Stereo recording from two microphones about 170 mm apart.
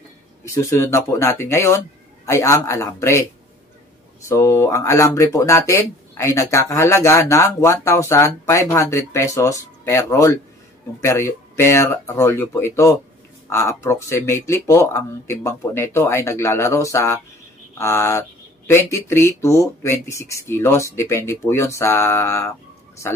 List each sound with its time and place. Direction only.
0.5 s speech: 15° left (ahead or behind)
4.3 s speech: 15° left (ahead or behind)